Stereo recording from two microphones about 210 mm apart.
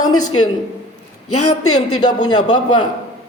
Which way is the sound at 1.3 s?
90° left.